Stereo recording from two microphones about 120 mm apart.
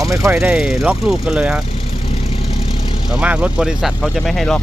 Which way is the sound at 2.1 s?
55° left (ahead or behind).